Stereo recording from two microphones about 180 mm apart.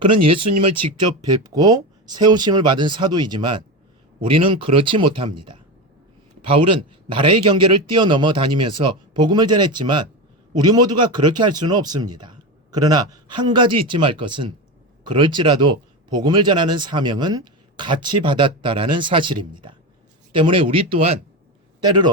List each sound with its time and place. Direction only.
0.0 s a man's voice: 30° right (ahead or behind)